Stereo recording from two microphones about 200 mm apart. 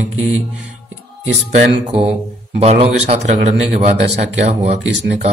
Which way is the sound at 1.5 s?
30° right (ahead or behind).